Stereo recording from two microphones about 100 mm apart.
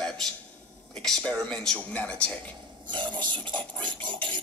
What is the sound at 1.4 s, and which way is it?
Speech, 5° left (ahead or behind).